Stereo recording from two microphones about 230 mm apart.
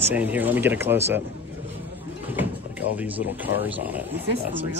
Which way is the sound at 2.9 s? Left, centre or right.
Centre.